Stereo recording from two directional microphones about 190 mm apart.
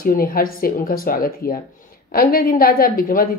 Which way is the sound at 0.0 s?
50° left (ahead or behind).